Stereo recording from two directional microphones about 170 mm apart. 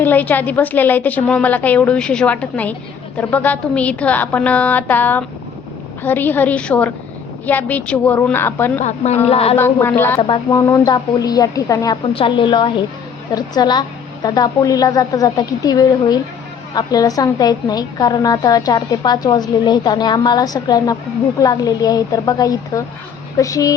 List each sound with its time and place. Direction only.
0.0 s a woman's voice: 10° left (ahead or behind)
8.8 s a woman's voice: 45° left (ahead or behind)
9.6 s a woman's voice: 15° left (ahead or behind)
10.2 s a woman's voice: 30° left (ahead or behind)